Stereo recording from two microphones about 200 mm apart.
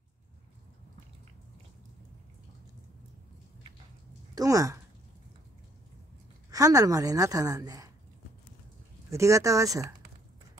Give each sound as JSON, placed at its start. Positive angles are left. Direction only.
{"t": 4.4, "sound": "a woman's voice", "side_deg": -15}
{"t": 6.5, "sound": "a woman's voice", "side_deg": -15}
{"t": 9.1, "sound": "a woman's voice", "side_deg": -15}